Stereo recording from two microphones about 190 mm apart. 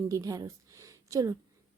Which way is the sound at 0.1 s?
20° right (ahead or behind).